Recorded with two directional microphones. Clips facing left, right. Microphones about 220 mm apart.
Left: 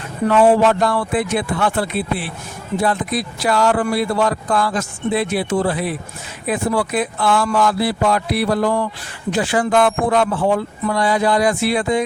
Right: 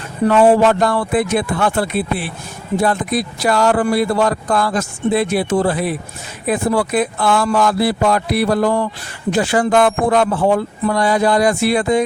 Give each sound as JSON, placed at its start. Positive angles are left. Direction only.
{"t": 0.3, "sound": "speech", "side_deg": -45}